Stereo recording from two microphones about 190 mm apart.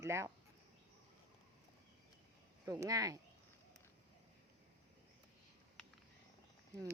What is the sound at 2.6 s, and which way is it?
Speech, 15° right (ahead or behind).